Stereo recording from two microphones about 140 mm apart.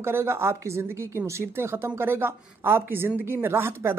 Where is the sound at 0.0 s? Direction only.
15° right (ahead or behind).